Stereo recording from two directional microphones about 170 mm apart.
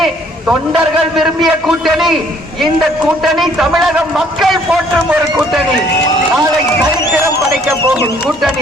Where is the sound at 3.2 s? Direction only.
Centre (ahead or behind).